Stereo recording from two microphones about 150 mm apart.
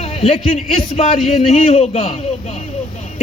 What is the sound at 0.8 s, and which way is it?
A man's voice, 45° left (ahead or behind).